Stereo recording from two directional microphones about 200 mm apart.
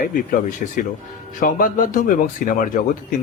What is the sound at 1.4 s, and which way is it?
Speech, 40° left (ahead or behind).